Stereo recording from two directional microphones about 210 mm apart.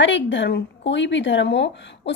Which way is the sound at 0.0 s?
60° left (ahead or behind).